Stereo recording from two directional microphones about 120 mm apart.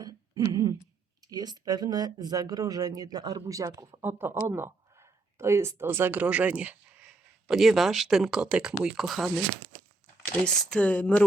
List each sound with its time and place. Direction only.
0.0 s hoot: 30° right (ahead or behind)
1.2 s speech: 30° right (ahead or behind)
4.0 s speech: 20° right (ahead or behind); by 9.3 s centre (ahead or behind)
10.4 s speech: 5° left (ahead or behind)